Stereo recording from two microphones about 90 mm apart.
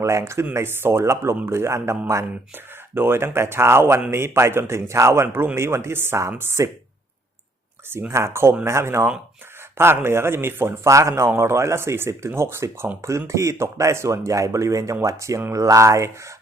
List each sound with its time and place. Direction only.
0.0 s speech: 35° right (ahead or behind)
7.9 s speech: 25° right (ahead or behind)